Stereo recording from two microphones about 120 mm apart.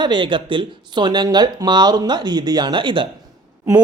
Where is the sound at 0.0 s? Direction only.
40° right (ahead or behind).